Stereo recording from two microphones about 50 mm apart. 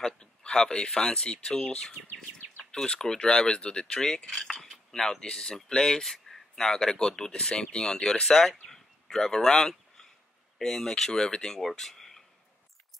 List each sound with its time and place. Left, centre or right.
0.0 s speech: centre
8.5 s a sound: centre
10.6 s speech: centre